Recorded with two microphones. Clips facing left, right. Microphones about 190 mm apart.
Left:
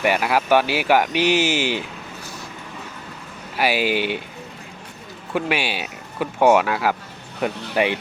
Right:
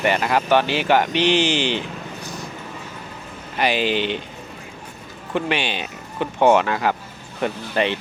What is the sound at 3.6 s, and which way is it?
Speech, 10° left (ahead or behind).